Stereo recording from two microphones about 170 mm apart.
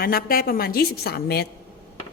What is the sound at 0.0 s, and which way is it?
A woman's voice, 60° left (ahead or behind).